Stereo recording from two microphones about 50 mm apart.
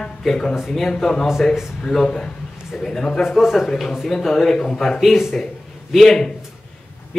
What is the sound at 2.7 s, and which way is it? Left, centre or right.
Speech, centre.